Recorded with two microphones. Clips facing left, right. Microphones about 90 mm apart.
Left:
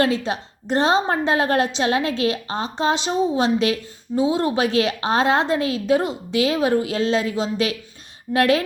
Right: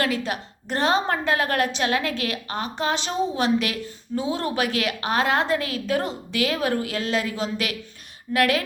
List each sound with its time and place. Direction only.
0.3 s a woman's voice: 20° left (ahead or behind)